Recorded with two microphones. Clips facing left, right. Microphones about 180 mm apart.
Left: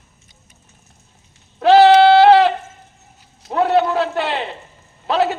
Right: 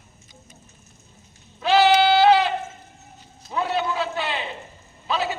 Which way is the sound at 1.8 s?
75° left (ahead or behind).